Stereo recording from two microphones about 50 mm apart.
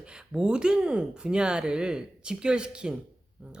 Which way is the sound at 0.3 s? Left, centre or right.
Centre.